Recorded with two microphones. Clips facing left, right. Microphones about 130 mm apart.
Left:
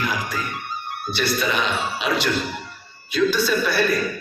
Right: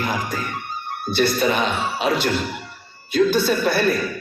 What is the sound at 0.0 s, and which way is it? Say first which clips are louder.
Speech: right 1 dB; 50° right (ahead or behind).